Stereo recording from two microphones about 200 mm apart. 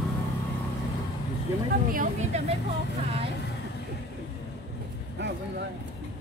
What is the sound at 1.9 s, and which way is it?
Speech, 40° right (ahead or behind).